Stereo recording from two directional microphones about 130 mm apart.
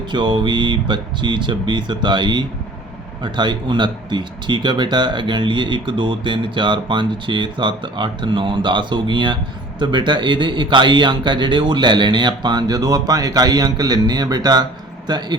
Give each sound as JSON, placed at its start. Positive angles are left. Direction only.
{"t": 0.1, "sound": "speech", "side_deg": -35}